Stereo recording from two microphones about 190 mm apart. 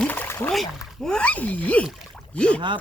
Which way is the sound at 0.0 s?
10° left (ahead or behind).